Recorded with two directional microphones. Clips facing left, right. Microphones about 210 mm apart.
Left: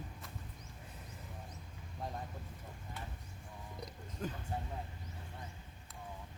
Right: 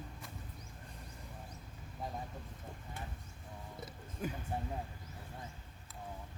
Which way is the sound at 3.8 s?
10° right (ahead or behind).